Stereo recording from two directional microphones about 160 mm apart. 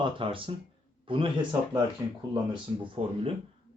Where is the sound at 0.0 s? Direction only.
35° right (ahead or behind).